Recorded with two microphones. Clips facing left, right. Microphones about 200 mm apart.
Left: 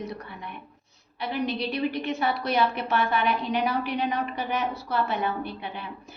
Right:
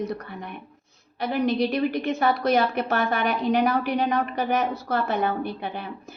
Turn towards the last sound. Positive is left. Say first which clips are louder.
# right 4 dB
turn(degrees=-45)  # may be behind; listen again after turning